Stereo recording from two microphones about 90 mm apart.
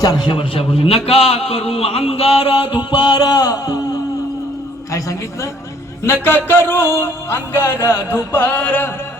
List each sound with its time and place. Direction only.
0.0 s a man's voice: 50° left (ahead or behind)
0.3 s a man's voice: 85° left; by 3.8 s 45° left (ahead or behind)
4.9 s a man's voice: 35° left (ahead or behind)
6.2 s music: 25° left (ahead or behind)